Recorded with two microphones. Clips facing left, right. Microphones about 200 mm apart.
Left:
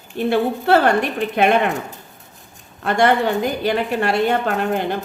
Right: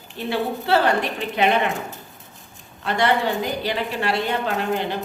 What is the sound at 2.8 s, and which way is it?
A woman's voice, 50° left (ahead or behind).